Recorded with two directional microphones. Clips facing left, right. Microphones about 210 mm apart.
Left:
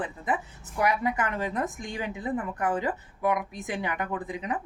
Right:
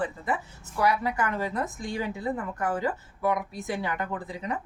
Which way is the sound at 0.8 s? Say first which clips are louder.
Even; 20° left (ahead or behind).